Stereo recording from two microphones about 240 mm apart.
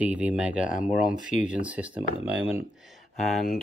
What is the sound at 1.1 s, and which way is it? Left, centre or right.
Speech, centre.